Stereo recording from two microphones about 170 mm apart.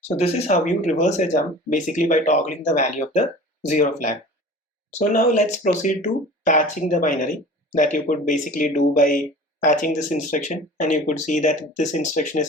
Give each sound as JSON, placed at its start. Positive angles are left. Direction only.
{"t": 0.2, "sound": "speech", "side_deg": 40}